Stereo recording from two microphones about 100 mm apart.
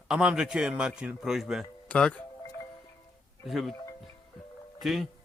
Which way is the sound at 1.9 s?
10° left (ahead or behind).